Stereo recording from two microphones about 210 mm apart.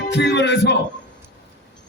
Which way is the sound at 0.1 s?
55° left (ahead or behind).